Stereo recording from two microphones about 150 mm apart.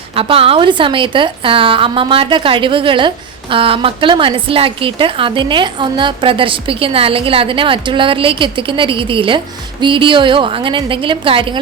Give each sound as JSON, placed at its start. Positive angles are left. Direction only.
{"t": 0.2, "sound": "a woman's voice", "side_deg": -40}